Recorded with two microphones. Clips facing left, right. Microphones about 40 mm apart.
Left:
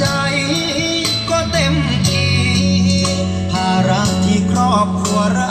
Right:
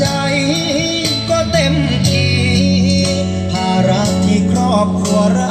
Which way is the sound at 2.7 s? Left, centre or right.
Right.